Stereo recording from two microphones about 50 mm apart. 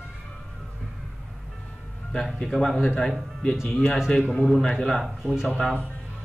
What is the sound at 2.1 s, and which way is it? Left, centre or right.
Speech, centre.